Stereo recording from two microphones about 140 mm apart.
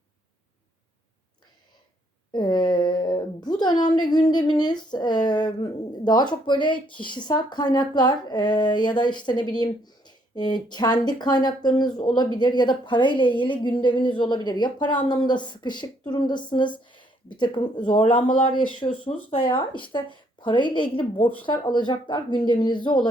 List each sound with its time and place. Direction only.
2.3 s a woman's voice: 30° left (ahead or behind)